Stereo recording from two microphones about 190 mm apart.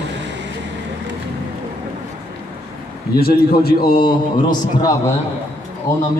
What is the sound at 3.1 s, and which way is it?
Speech, 55° left (ahead or behind).